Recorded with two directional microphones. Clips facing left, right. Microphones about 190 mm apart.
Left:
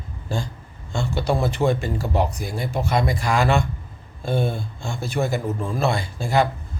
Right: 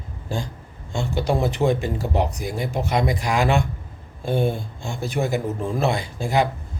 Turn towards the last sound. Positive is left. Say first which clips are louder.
# left 1 dB
turn(degrees=-15)  # may be behind; listen again after turning